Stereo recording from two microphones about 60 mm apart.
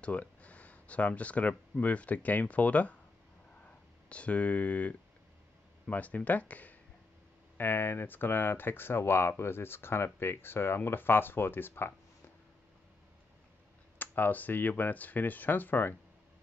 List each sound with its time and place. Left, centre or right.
0.0 s speech: left
7.5 s speech: left
13.9 s speech: left